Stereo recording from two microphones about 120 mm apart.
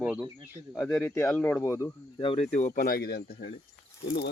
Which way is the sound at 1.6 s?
25° left (ahead or behind).